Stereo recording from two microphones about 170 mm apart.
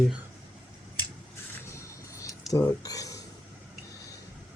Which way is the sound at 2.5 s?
20° left (ahead or behind).